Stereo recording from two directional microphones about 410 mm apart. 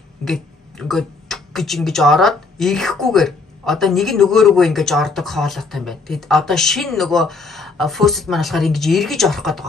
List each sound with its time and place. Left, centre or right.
0.2 s speech: centre